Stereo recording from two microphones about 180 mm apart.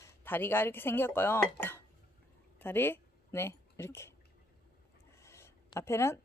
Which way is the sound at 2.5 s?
10° left (ahead or behind).